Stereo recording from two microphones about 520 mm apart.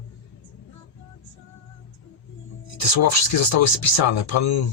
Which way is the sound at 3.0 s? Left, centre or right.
Left.